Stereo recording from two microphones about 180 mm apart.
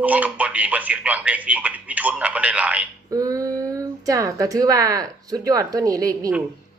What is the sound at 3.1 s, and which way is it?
Speech, 20° right (ahead or behind).